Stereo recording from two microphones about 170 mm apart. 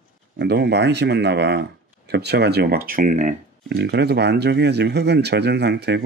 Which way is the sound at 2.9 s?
50° right (ahead or behind).